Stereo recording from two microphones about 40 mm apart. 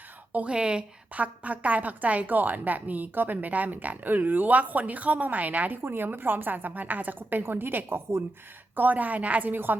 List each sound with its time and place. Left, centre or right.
0.3 s a woman's voice: right
1.1 s a woman's voice: right
5.8 s a woman's voice: right
7.2 s a woman's voice: right
8.7 s a woman's voice: right
9.5 s a woman's voice: right